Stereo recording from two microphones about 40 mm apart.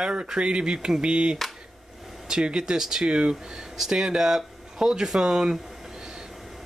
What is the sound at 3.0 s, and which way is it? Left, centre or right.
Speech, right.